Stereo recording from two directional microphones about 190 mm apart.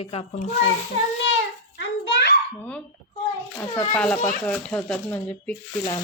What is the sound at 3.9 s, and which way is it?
A child's voice, 5° left (ahead or behind).